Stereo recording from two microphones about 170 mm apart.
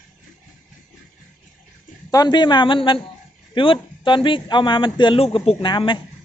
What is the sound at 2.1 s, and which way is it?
A man's voice, 25° left (ahead or behind).